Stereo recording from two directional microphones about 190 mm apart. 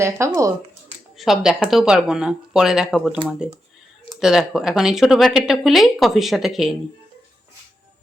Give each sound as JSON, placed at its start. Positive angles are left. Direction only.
{"t": 0.0, "sound": "speech", "side_deg": -15}
{"t": 1.1, "sound": "speech", "side_deg": 0}